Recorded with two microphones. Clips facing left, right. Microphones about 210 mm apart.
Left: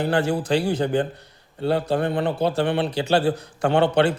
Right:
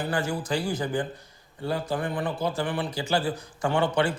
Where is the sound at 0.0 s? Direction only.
65° left (ahead or behind).